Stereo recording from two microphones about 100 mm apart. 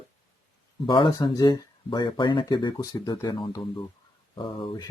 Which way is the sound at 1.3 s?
40° left (ahead or behind).